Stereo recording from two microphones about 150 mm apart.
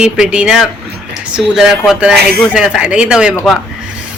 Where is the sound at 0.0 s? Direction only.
5° right (ahead or behind).